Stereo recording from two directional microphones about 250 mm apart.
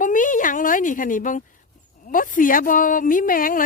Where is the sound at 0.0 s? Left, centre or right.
Left.